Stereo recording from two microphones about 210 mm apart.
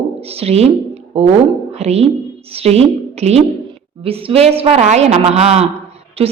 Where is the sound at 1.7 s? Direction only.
30° right (ahead or behind).